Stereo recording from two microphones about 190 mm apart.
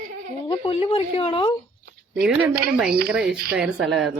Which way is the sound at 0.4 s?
25° left (ahead or behind).